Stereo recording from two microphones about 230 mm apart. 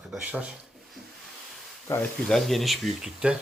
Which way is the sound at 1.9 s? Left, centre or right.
Centre.